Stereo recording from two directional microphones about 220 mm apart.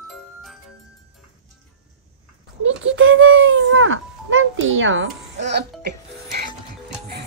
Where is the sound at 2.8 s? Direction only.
65° right (ahead or behind).